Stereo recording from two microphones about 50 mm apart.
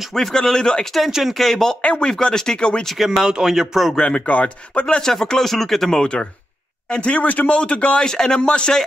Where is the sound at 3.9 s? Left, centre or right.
Left.